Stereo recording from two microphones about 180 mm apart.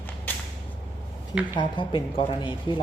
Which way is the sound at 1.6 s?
30° left (ahead or behind).